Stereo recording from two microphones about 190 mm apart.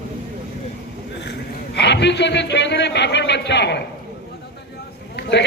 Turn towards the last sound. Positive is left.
turn(degrees=65)  # may be behind; listen again after turning